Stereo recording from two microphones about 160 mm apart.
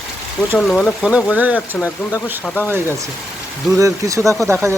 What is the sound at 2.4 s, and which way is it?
Speech, 10° left (ahead or behind).